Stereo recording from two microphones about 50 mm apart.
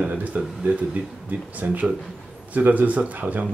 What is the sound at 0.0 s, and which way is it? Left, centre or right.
Speech, right.